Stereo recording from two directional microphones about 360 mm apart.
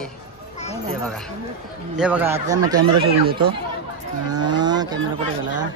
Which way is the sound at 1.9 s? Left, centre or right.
Centre.